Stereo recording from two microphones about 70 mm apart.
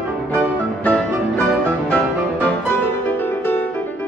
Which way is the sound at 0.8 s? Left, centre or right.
Left.